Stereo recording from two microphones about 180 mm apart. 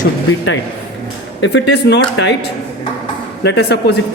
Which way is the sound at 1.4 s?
70° left (ahead or behind).